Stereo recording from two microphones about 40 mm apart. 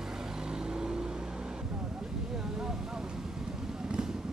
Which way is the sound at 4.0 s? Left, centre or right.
Right.